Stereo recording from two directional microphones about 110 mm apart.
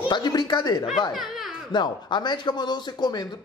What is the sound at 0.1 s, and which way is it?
Speech, 40° left (ahead or behind).